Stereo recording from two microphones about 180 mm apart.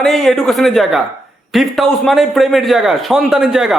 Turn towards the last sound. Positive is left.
turn(degrees=0)  # may be behind; listen again after turning